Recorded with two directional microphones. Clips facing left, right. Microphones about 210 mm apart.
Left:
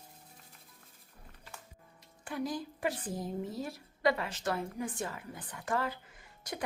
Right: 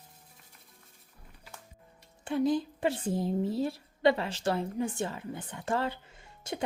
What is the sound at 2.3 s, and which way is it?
A woman's voice, 25° right (ahead or behind).